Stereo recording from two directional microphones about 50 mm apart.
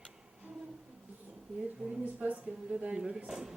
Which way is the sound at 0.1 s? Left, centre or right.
Centre.